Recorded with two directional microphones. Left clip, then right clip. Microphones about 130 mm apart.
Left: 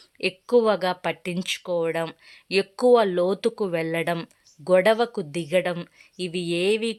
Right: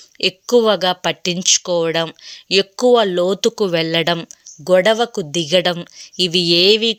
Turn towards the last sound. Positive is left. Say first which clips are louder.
# right 11 dB
turn(degrees=-25)  # may be behind; listen again after turning